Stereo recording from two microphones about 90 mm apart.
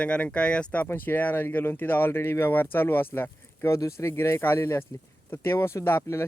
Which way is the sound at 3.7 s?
35° left (ahead or behind).